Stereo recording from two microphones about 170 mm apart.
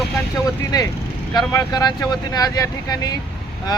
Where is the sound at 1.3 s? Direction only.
25° left (ahead or behind).